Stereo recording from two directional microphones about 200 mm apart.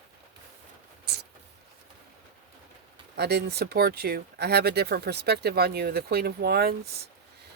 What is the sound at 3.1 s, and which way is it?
Speech, 55° right (ahead or behind).